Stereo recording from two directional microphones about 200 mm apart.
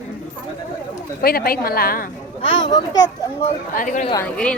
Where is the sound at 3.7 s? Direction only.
40° left (ahead or behind).